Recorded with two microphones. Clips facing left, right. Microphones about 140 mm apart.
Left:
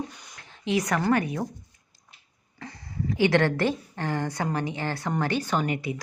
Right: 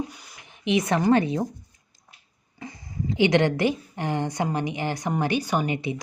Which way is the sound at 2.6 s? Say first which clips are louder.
Right 1 dB; 15° right (ahead or behind).